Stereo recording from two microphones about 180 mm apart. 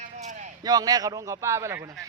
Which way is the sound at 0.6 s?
20° right (ahead or behind).